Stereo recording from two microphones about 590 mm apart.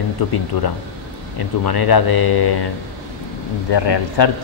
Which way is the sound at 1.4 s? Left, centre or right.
Left.